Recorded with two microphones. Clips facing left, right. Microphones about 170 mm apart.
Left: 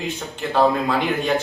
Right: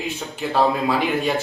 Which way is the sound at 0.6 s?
Centre (ahead or behind).